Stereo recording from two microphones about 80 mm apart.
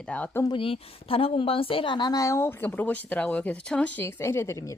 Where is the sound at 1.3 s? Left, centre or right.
Left.